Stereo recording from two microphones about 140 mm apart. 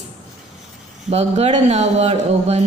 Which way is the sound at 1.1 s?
50° right (ahead or behind).